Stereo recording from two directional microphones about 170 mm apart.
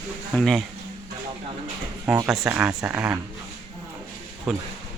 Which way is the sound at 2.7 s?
20° right (ahead or behind).